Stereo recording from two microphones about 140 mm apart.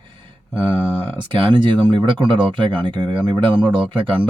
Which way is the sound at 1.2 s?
35° right (ahead or behind).